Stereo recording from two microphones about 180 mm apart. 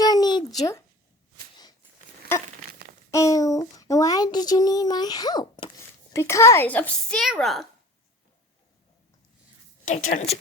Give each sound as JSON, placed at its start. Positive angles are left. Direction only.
{"t": 0.0, "sound": "a sound", "side_deg": 20}
{"t": 3.1, "sound": "a woman's voice", "side_deg": 15}
{"t": 9.8, "sound": "a woman's voice", "side_deg": 45}